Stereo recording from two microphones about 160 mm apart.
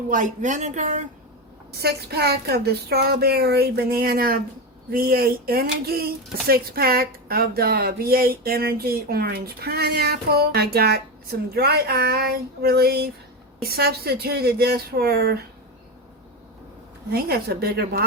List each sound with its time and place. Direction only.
0.1 s speech: 55° right (ahead or behind)
1.8 s speech: 80° right
17.1 s speech: 80° right